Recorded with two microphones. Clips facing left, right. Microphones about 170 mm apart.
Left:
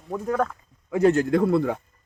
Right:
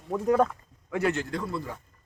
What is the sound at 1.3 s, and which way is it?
Speech, 60° left (ahead or behind).